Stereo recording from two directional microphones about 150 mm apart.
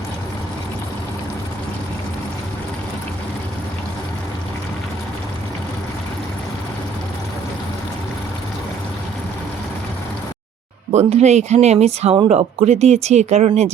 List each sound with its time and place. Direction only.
10.9 s speech: 50° right (ahead or behind)